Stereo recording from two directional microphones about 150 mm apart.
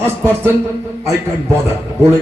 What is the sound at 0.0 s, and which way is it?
Speech, 15° right (ahead or behind).